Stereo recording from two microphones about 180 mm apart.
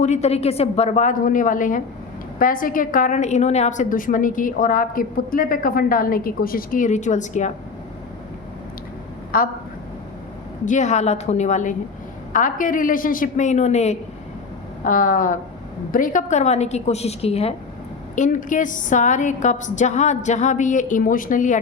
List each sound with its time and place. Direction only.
0.0 s a woman's voice: 40° left (ahead or behind)
9.3 s a woman's voice: 50° left (ahead or behind)
10.7 s a woman's voice: 40° left (ahead or behind)
14.8 s a woman's voice: 50° left (ahead or behind); by 17.5 s 35° left (ahead or behind)
18.1 s a woman's voice: 45° left (ahead or behind)